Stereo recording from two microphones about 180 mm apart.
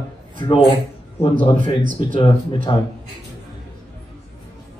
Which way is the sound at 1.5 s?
50° right (ahead or behind).